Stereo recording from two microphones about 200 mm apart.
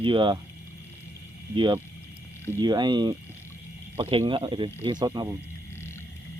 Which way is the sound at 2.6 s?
20° right (ahead or behind).